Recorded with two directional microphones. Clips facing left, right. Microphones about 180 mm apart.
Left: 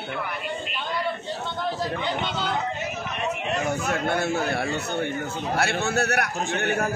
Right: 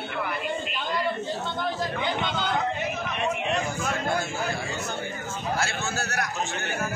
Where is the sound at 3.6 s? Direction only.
65° left (ahead or behind).